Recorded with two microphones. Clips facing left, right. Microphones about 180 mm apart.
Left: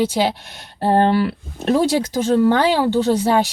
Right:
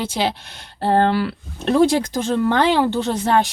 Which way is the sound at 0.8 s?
15° left (ahead or behind).